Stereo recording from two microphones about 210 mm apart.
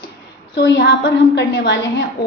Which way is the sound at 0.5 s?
55° left (ahead or behind).